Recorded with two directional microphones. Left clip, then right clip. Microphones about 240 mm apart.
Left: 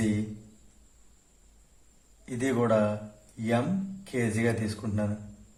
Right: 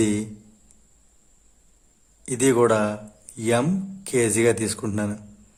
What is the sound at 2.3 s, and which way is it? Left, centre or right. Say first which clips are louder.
Speech: right 7 dB; right.